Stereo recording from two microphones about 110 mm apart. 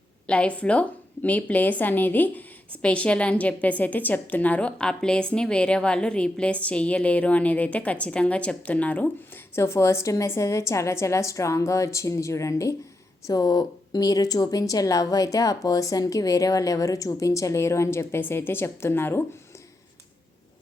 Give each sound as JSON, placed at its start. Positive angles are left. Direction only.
{"t": 0.3, "sound": "a woman's voice", "side_deg": 10}
{"t": 9.6, "sound": "a woman's voice", "side_deg": 25}